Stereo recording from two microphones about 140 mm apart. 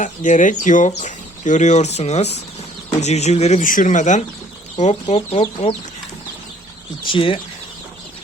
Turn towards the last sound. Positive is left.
turn(degrees=40)  # may be behind; listen again after turning